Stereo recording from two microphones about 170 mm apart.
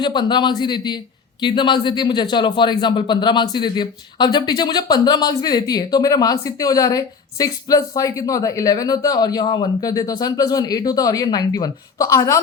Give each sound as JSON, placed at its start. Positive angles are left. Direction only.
{"t": 0.0, "sound": "speech", "side_deg": 25}